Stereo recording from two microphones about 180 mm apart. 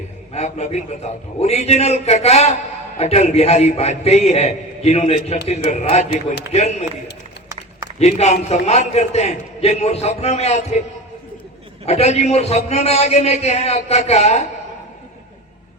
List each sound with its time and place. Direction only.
0.3 s a man's voice: 40° left (ahead or behind)
7.9 s a man's voice: 35° left (ahead or behind)
11.9 s a man's voice: 35° left (ahead or behind)